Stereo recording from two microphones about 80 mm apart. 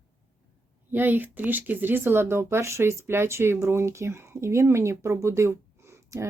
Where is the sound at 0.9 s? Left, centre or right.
Right.